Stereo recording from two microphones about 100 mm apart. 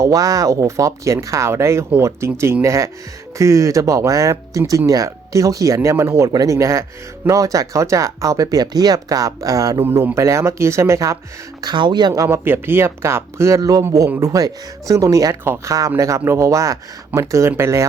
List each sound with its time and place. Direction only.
0.0 s speech: 35° right (ahead or behind)
9.8 s speech: 20° right (ahead or behind)
11.6 s speech: 50° right (ahead or behind)
12.1 s speech: 35° right (ahead or behind)
12.5 s speech: 20° right (ahead or behind)